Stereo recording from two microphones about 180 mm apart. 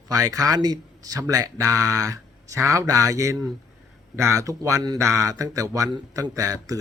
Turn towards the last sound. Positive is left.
turn(degrees=-20)  # may be behind; listen again after turning